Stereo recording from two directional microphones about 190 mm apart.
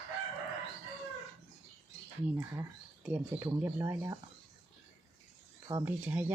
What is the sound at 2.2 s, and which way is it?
Speech, 15° right (ahead or behind).